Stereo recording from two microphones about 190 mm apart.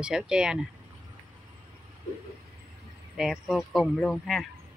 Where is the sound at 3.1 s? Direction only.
Centre (ahead or behind).